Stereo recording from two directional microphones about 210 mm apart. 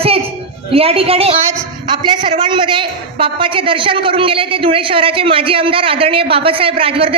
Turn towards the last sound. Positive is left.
turn(degrees=-25)  # may be behind; listen again after turning